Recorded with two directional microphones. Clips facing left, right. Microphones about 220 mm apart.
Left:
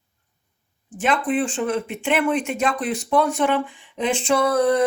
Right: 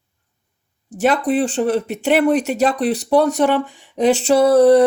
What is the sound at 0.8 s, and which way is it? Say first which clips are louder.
Speech: right 5 dB; 40° right (ahead or behind).